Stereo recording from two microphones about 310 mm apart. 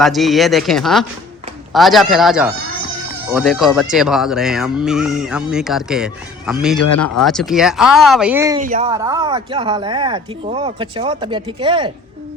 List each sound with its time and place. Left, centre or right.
0.0 s speech: centre
8.6 s a woman's voice: right
8.9 s speech: centre